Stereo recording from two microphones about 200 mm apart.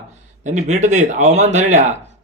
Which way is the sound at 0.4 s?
35° right (ahead or behind).